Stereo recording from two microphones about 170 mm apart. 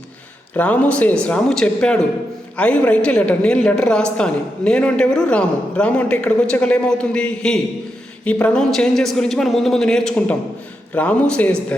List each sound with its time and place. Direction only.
0.5 s a man's voice: 10° left (ahead or behind)